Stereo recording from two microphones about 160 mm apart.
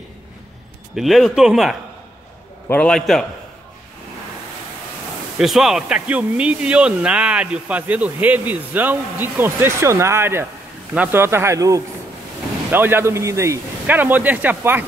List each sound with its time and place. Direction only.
0.9 s speech: centre (ahead or behind)
5.4 s speech: centre (ahead or behind)